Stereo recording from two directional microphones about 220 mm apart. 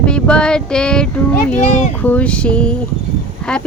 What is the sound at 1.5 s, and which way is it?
Speech, 35° left (ahead or behind).